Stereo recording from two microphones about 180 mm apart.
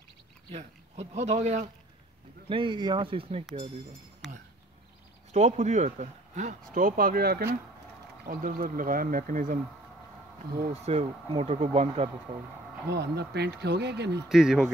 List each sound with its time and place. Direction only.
0.5 s speech: 35° right (ahead or behind)
2.5 s speech: 25° right (ahead or behind)
5.3 s speech: 40° right (ahead or behind); by 7.5 s 60° right (ahead or behind)
8.3 s speech: 50° right (ahead or behind)
10.7 s speech: 35° right (ahead or behind)
12.9 s speech: 65° right (ahead or behind)
14.3 s speech: 5° right (ahead or behind)